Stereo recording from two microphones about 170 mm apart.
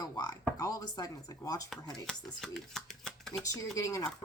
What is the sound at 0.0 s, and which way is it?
Speech, 25° left (ahead or behind).